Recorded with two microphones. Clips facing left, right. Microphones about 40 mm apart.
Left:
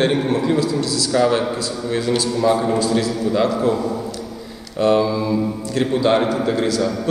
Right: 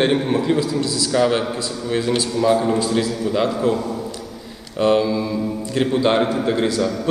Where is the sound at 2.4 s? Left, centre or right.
Centre.